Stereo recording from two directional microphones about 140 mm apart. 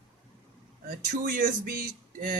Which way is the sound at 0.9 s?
85° right.